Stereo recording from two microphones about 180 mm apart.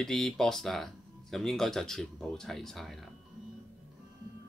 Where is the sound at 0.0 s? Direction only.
Centre (ahead or behind).